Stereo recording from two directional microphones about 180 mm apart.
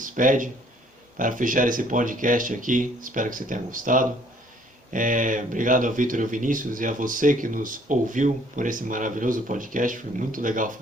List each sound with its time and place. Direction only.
0.0 s speech: 45° right (ahead or behind)